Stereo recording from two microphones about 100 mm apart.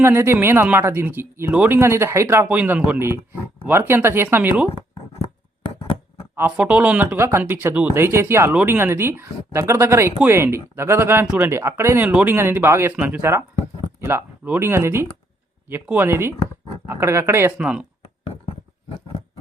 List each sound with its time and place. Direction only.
0.0 s speech: 25° right (ahead or behind)
2.5 s speech: 15° right (ahead or behind)
5.2 s a sound: 70° left (ahead or behind)
6.6 s speech: 10° right (ahead or behind)
7.2 s speech: 25° right (ahead or behind)
13.0 s speech: 10° right (ahead or behind)
14.0 s speech: 25° right (ahead or behind)
17.6 s speech: 10° right (ahead or behind)